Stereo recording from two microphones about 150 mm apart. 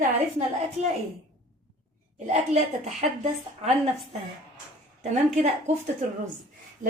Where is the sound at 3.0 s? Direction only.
55° right (ahead or behind).